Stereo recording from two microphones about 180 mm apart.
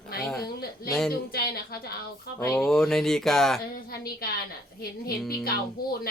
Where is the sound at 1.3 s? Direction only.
60° left (ahead or behind).